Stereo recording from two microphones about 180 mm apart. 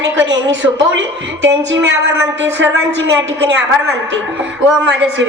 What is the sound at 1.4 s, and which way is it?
A woman's voice, 75° right (ahead or behind).